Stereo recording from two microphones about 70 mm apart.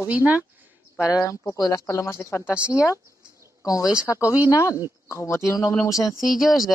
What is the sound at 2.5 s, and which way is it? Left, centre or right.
Speech, centre.